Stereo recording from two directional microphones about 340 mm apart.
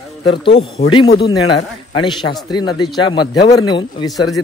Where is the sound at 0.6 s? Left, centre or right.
Centre.